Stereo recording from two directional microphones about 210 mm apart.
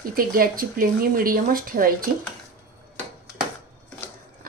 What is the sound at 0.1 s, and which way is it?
A woman's voice, 45° right (ahead or behind).